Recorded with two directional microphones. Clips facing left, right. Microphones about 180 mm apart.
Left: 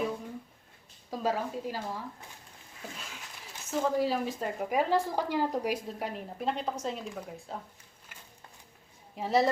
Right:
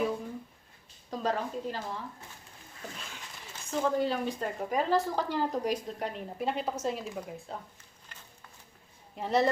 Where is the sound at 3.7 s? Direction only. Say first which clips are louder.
Even; 5° left (ahead or behind).